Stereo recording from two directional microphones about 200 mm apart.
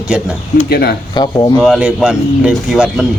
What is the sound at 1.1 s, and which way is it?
Speech, 20° left (ahead or behind).